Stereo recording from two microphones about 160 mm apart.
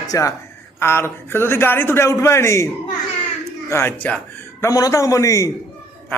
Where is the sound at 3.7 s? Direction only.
15° left (ahead or behind).